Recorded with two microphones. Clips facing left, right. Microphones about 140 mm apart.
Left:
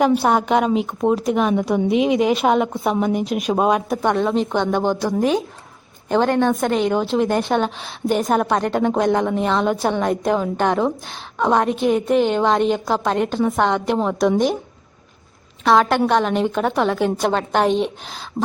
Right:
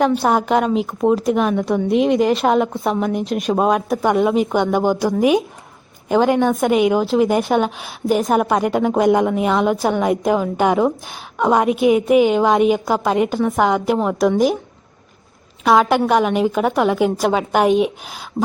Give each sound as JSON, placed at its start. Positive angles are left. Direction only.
{"t": 0.0, "sound": "a woman's voice", "side_deg": 0}
{"t": 15.6, "sound": "a woman's voice", "side_deg": 0}